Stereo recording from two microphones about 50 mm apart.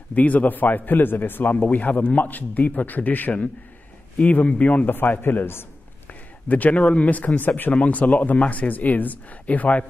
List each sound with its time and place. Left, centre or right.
0.1 s a man's voice: left
6.0 s a man's voice: left